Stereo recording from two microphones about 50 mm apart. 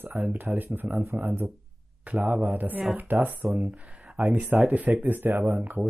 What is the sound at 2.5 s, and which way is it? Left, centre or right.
Speech, right.